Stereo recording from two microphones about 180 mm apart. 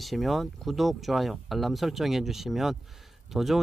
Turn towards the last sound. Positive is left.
turn(degrees=0)  # may be behind; listen again after turning